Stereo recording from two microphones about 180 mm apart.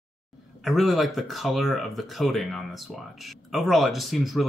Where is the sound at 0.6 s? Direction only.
Centre (ahead or behind).